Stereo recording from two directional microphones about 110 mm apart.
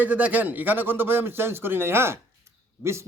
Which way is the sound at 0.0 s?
15° right (ahead or behind).